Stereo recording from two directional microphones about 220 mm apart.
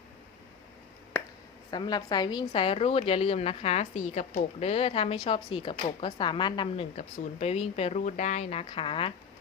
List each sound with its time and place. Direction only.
1.7 s speech: 20° left (ahead or behind)